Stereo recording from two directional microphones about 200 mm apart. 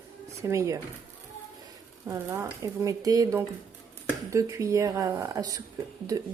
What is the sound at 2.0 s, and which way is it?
Speech, 15° right (ahead or behind).